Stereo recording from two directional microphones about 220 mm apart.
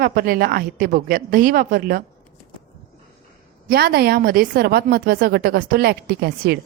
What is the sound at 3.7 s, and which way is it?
A woman's voice, 45° right (ahead or behind).